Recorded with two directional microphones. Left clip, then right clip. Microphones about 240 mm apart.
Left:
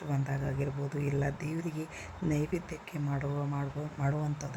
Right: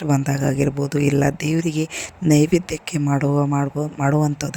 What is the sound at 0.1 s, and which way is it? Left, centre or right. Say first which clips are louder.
Speech: right 16 dB; right.